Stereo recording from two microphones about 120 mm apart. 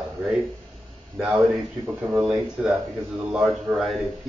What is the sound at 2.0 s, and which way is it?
Speech, 10° right (ahead or behind).